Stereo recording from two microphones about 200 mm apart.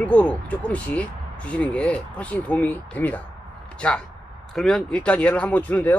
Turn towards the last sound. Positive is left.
turn(degrees=10)  # may be behind; listen again after turning